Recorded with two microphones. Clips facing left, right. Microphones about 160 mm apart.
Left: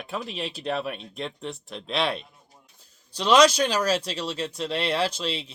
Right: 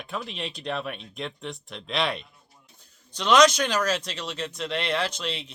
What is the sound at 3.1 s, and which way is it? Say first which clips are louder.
Speech: left 1 dB; 30° left (ahead or behind).